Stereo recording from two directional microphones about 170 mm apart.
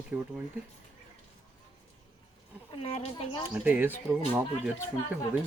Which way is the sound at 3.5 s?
10° right (ahead or behind).